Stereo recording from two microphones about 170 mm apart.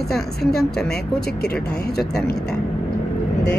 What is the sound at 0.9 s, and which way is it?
Speech, 65° left (ahead or behind).